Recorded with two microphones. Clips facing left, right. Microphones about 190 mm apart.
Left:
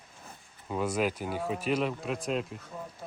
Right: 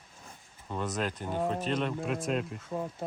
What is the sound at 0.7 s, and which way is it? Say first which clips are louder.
Speech: left 4 dB; 10° left (ahead or behind).